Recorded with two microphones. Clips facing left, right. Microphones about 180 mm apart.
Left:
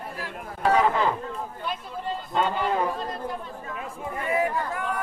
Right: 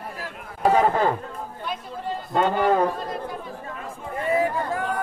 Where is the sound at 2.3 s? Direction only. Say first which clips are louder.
Right 6 dB; 50° right (ahead or behind).